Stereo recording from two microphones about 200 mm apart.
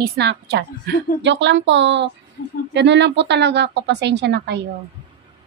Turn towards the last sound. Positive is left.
turn(degrees=-55)  # may be behind; listen again after turning